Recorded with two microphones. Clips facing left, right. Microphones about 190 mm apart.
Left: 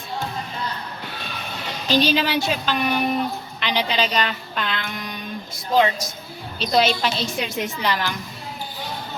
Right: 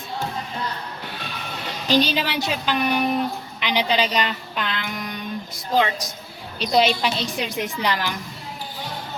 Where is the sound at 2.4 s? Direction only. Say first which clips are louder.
Even; 15° right (ahead or behind).